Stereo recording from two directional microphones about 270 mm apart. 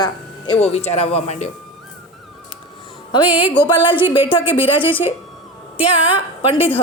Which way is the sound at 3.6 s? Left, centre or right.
Centre.